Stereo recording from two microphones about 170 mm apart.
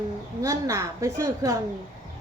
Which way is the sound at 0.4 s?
20° right (ahead or behind).